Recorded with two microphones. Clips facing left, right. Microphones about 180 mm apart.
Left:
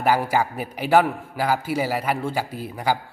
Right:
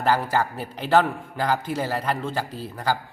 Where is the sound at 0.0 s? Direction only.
10° left (ahead or behind).